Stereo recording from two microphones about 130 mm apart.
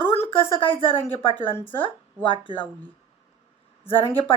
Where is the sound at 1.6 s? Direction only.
40° left (ahead or behind).